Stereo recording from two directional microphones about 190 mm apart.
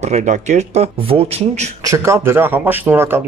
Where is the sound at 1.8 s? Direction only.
15° right (ahead or behind).